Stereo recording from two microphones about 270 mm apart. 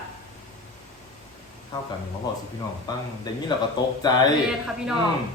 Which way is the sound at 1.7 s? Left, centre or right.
Centre.